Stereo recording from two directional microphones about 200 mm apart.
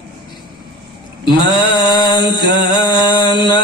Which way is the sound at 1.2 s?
25° left (ahead or behind).